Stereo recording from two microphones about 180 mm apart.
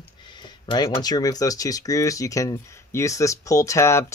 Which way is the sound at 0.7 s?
25° left (ahead or behind).